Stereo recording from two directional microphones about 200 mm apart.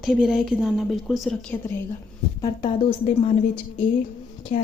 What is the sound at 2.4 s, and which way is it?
Speech, 25° left (ahead or behind).